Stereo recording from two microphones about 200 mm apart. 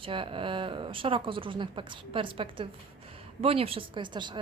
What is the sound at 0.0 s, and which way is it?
A woman's voice, 25° right (ahead or behind).